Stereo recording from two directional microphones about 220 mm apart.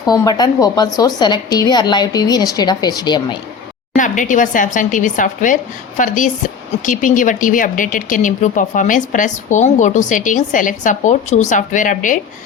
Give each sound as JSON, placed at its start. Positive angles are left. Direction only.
{"t": 0.0, "sound": "a woman's voice", "side_deg": 15}
{"t": 3.9, "sound": "speech", "side_deg": 35}